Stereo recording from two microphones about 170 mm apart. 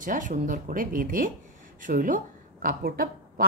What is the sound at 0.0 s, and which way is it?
Speech, 50° right (ahead or behind).